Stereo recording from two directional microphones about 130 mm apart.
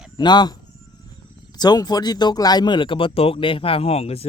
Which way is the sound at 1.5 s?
30° left (ahead or behind).